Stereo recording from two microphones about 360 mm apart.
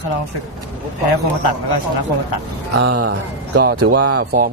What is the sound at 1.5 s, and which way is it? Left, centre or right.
Speech, left.